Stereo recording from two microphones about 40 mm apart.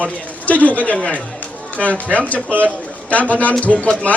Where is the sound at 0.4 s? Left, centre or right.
Left.